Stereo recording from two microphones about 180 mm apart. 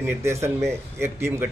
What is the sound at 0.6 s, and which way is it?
Speech, 5° left (ahead or behind).